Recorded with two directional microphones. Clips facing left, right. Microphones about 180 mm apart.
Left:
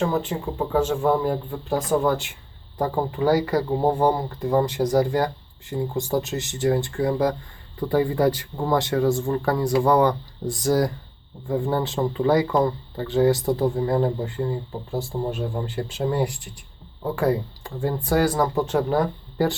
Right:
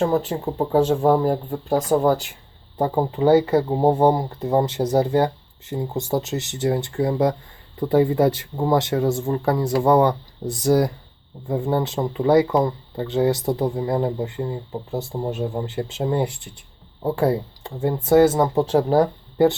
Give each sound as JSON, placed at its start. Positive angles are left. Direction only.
{"t": 0.1, "sound": "speech", "side_deg": -40}
{"t": 2.7, "sound": "speech", "side_deg": -20}